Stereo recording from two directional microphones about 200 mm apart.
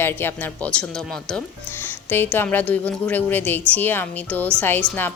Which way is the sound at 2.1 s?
10° left (ahead or behind).